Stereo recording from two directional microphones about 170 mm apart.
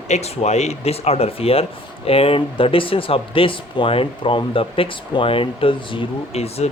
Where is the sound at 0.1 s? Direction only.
40° left (ahead or behind).